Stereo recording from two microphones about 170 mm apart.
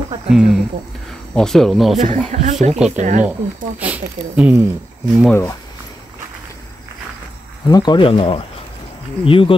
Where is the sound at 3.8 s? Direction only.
10° right (ahead or behind).